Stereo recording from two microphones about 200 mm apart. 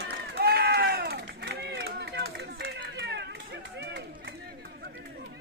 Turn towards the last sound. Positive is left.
turn(degrees=-80)